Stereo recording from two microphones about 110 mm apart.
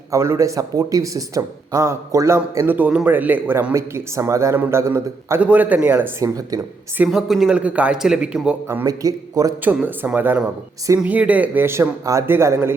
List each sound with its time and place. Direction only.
0.1 s speech: 25° right (ahead or behind)
5.4 s a man's voice: 15° right (ahead or behind)
6.1 s a man's voice: 30° right (ahead or behind)
7.1 s a man's voice: 5° right (ahead or behind)
8.9 s a man's voice: 30° right (ahead or behind)
9.6 s a man's voice: 15° right (ahead or behind)